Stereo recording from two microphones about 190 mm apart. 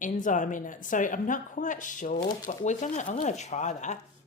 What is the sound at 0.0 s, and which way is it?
Speech, 45° left (ahead or behind).